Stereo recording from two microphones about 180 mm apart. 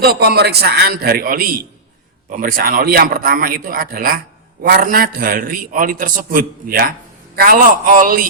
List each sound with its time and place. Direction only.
0.0 s a man's voice: 60° right (ahead or behind)